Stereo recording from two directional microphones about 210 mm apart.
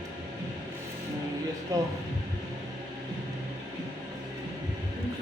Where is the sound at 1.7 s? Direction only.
15° right (ahead or behind).